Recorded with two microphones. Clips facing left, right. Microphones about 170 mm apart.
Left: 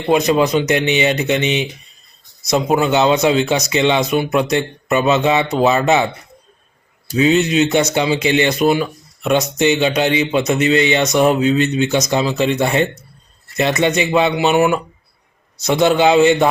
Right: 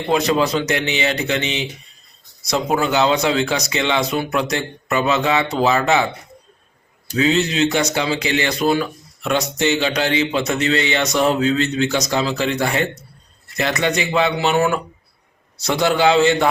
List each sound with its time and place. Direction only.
0.1 s speech: 20° left (ahead or behind)
7.1 s speech: 20° left (ahead or behind)